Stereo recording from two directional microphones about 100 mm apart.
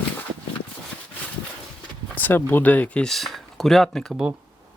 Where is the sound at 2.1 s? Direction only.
20° left (ahead or behind).